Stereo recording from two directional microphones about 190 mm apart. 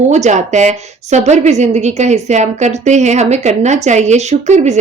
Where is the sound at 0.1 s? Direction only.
40° right (ahead or behind).